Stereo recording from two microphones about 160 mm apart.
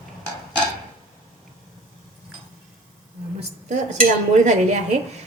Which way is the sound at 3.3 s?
45° right (ahead or behind).